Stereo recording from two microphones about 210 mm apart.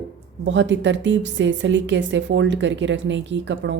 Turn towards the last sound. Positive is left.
turn(degrees=-60)  # may be behind; listen again after turning